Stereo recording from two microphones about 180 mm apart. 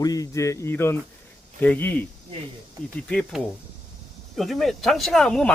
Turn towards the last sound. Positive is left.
turn(degrees=5)  # may be behind; listen again after turning